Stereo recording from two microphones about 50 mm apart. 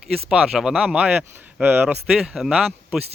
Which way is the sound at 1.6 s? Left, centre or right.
Right.